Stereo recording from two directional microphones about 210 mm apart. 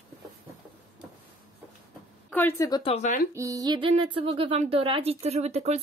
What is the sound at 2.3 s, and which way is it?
Speech, 10° left (ahead or behind).